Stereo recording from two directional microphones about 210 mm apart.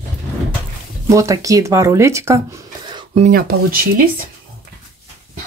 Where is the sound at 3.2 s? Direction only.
45° right (ahead or behind).